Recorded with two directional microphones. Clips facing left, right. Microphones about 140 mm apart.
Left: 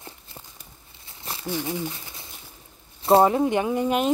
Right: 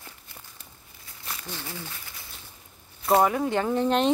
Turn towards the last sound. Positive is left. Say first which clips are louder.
# left 1 dB
turn(degrees=10)  # may be behind; listen again after turning